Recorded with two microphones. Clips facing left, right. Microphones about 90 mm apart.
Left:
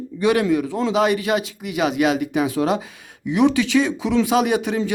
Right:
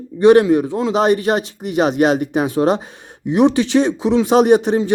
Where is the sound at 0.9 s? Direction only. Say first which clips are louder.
Right 4 dB; 40° right (ahead or behind).